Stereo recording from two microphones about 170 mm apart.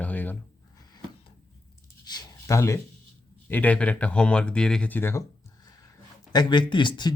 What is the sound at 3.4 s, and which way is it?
Speech, 10° left (ahead or behind).